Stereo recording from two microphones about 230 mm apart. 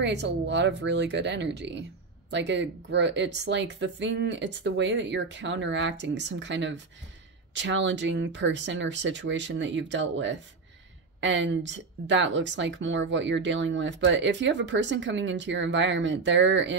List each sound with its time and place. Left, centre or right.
0.0 s speech: right